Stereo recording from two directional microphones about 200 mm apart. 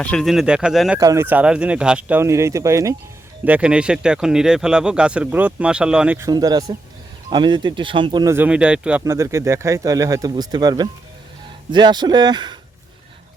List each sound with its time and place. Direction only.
0.0 s speech: 5° left (ahead or behind)
0.9 s speech: 15° right (ahead or behind)